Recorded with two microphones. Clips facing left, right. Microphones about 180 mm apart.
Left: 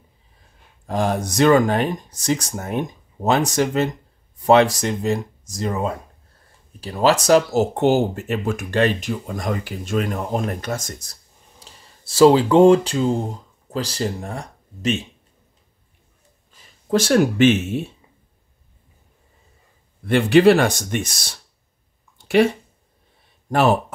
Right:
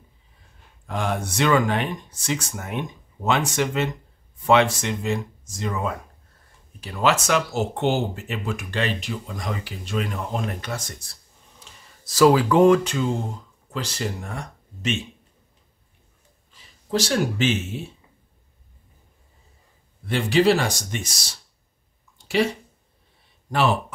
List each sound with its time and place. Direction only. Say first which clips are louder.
0.8 s speech: left 5 dB; 40° left (ahead or behind)
11.6 s speech: left 2 dB; 30° left (ahead or behind)
16.9 s speech: left 6 dB; 55° left (ahead or behind)
20.1 s speech: left 6 dB; 60° left (ahead or behind)